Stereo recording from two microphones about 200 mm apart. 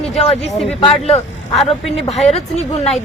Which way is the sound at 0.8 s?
30° left (ahead or behind).